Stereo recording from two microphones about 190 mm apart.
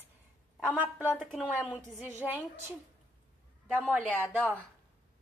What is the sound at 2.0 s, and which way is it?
Speech, 10° right (ahead or behind).